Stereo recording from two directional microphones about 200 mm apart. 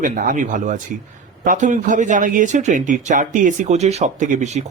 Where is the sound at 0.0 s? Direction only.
40° right (ahead or behind).